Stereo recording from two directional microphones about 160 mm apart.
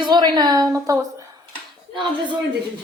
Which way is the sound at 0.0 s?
25° right (ahead or behind).